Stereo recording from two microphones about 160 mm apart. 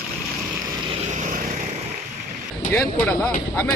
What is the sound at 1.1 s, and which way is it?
Vehicle, 55° right (ahead or behind).